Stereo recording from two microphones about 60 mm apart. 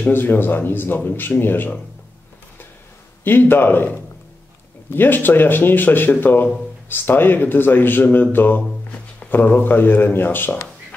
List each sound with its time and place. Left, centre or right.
0.1 s speech: left
3.3 s speech: left